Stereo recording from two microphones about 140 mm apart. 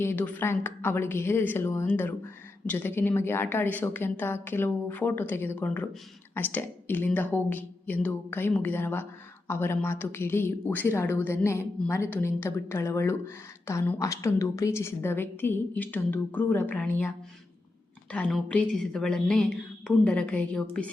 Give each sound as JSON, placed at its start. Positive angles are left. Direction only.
{"t": 0.0, "sound": "speech", "side_deg": 15}
{"t": 18.1, "sound": "a woman's voice", "side_deg": 10}